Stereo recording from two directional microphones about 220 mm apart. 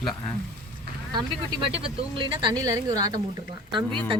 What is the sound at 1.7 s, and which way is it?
Speech, 20° right (ahead or behind).